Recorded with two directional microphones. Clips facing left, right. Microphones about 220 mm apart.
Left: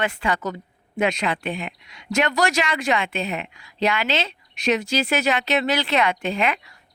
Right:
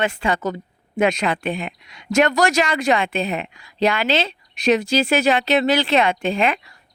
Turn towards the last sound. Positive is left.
turn(degrees=-30)  # may be behind; listen again after turning